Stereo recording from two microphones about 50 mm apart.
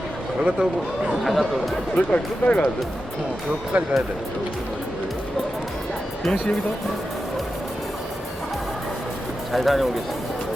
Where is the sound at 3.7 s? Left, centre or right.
Right.